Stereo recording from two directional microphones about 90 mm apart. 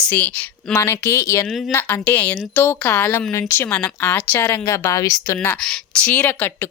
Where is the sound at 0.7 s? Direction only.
30° left (ahead or behind).